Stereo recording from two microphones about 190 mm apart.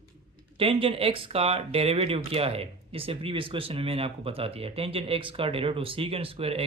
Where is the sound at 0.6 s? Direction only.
30° right (ahead or behind).